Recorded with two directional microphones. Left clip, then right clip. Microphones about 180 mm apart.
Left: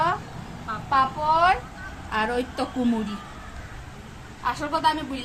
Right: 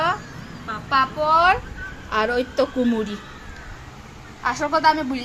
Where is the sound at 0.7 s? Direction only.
30° right (ahead or behind).